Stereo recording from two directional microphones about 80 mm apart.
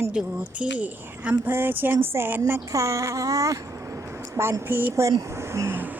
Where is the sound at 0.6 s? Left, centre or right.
Centre.